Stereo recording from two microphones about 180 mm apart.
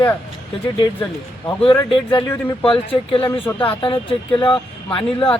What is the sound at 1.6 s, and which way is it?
Speech, 25° left (ahead or behind).